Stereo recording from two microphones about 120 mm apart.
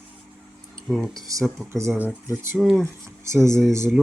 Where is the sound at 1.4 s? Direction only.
Centre (ahead or behind).